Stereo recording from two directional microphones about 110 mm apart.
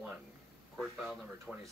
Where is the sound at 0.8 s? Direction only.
5° right (ahead or behind).